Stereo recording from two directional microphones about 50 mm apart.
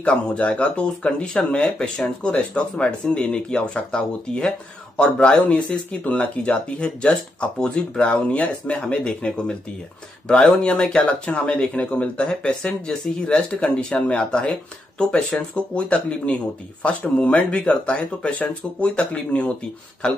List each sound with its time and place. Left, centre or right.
0.0 s speech: left